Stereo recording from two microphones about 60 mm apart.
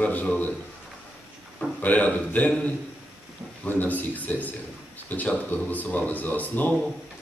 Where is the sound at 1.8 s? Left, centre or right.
Left.